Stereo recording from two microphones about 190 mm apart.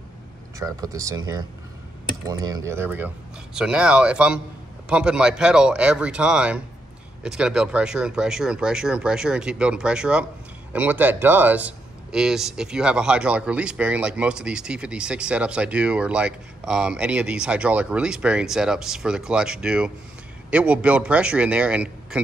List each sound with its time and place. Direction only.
0.6 s a man's voice: 20° right (ahead or behind)